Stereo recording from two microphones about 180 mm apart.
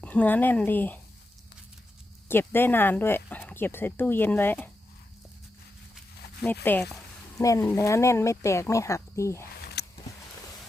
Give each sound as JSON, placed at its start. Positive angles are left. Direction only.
{"t": 0.0, "sound": "speech", "side_deg": 10}
{"t": 2.2, "sound": "speech", "side_deg": 10}
{"t": 6.4, "sound": "speech", "side_deg": 10}
{"t": 9.8, "sound": "a sound", "side_deg": 65}